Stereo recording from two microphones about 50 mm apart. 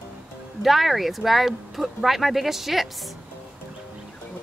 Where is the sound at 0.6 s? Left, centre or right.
Centre.